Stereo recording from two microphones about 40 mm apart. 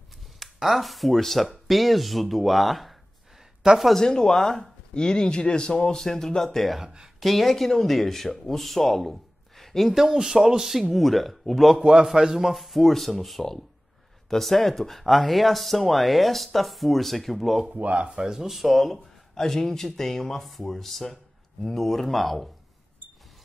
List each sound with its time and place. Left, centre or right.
0.6 s speech: centre
3.9 s speech: centre
10.1 s speech: centre
11.8 s a man's voice: right
12.1 s speech: centre
17.7 s speech: right
18.0 s speech: centre
18.5 s speech: centre